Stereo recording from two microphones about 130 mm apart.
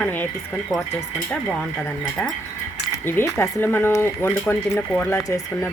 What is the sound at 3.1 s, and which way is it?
Speech, 20° left (ahead or behind).